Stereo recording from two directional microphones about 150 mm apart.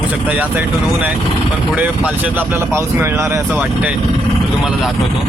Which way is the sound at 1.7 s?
10° right (ahead or behind).